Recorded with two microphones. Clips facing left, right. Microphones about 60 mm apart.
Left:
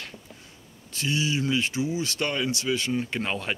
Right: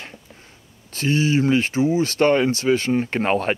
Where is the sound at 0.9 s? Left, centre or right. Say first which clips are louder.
Right 8 dB; right.